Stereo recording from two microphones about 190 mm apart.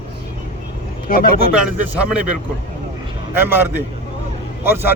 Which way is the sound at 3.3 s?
10° right (ahead or behind).